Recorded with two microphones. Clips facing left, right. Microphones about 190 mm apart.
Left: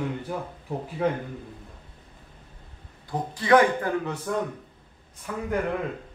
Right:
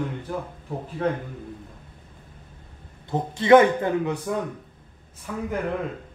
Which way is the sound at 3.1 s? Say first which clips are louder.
Right 5 dB; 25° right (ahead or behind).